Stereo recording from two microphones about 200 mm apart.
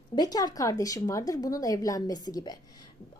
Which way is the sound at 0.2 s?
20° left (ahead or behind).